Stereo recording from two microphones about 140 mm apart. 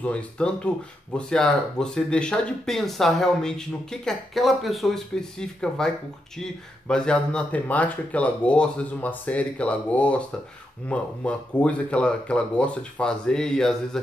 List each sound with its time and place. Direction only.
0.0 s speech: 10° left (ahead or behind)
6.9 s speech: 5° left (ahead or behind)